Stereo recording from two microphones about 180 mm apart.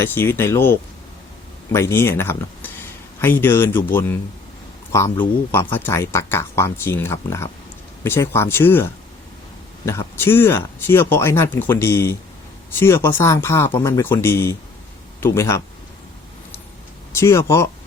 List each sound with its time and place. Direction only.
0.0 s speech: 10° left (ahead or behind)
17.1 s speech: 15° left (ahead or behind)